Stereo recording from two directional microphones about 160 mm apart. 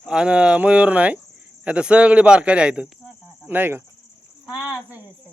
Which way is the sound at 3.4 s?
10° right (ahead or behind).